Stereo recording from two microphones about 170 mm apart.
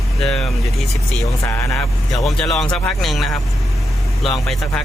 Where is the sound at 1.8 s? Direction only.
Centre (ahead or behind).